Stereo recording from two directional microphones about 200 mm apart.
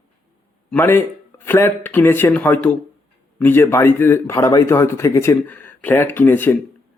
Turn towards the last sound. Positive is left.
turn(degrees=10)  # may be behind; listen again after turning